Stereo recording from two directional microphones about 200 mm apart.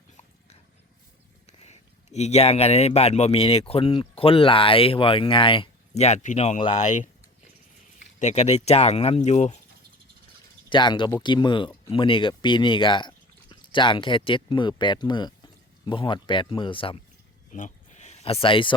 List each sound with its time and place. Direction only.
1.5 s speech: 35° left (ahead or behind)
10.7 s speech: 25° left (ahead or behind)
17.5 s a sound: 35° left (ahead or behind)